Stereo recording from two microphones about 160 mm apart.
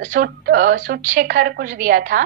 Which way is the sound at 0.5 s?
55° right (ahead or behind).